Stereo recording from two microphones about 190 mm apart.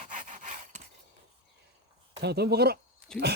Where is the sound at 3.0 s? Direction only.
5° left (ahead or behind).